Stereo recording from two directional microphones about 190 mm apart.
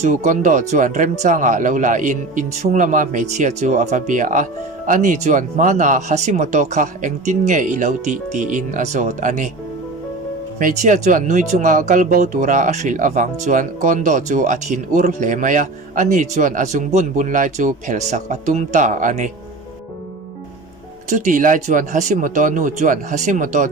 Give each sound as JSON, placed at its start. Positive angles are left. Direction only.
{"t": 0.0, "sound": "speech", "side_deg": -40}
{"t": 10.6, "sound": "speech", "side_deg": -40}
{"t": 21.1, "sound": "speech", "side_deg": -40}